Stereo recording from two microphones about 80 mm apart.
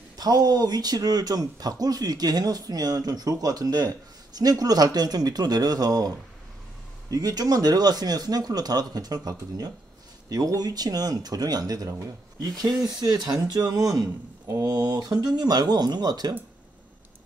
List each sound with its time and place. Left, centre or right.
0.2 s speech: right
12.8 s speech: right